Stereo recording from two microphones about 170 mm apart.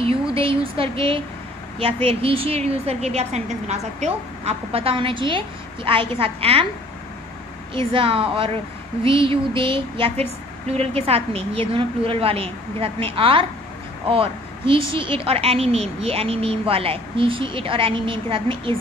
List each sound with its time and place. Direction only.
0.0 s a sound: 30° right (ahead or behind)
2.0 s a woman's voice: 35° right (ahead or behind)
7.9 s a woman's voice: 30° right (ahead or behind)